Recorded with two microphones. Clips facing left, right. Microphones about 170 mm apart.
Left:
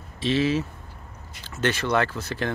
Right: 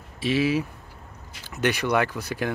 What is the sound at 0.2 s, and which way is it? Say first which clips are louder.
Speech: even; 10° right (ahead or behind).